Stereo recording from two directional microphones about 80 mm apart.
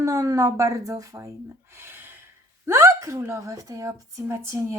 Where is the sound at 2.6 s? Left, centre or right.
Right.